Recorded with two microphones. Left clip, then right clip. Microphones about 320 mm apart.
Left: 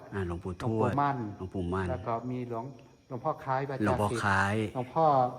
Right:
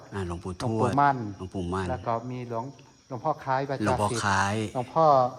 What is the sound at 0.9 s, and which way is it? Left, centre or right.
Speech, right.